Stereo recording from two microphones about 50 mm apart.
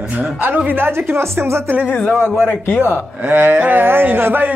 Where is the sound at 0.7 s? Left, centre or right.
Right.